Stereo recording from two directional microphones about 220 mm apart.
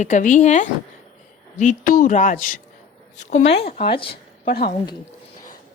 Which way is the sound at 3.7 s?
25° left (ahead or behind).